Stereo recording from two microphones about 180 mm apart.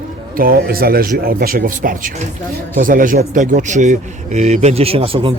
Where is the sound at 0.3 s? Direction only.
55° right (ahead or behind).